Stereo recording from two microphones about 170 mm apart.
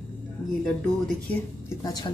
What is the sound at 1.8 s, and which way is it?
Speech, 25° left (ahead or behind).